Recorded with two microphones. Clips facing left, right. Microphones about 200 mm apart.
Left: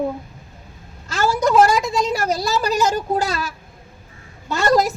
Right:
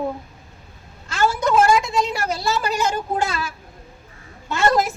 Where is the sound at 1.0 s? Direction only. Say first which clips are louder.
Left 2 dB; 40° left (ahead or behind).